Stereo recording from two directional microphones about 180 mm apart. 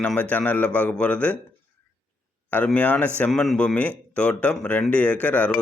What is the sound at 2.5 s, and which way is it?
Speech, 10° left (ahead or behind).